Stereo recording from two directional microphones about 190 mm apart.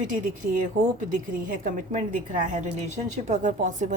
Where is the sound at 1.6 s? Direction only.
40° right (ahead or behind).